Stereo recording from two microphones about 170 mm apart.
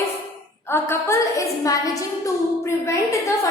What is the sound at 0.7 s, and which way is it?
A woman's voice, 15° left (ahead or behind).